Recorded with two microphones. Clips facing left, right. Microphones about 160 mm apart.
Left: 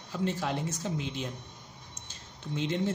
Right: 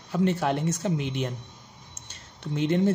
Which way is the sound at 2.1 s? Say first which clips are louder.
Right 4 dB; 60° right (ahead or behind).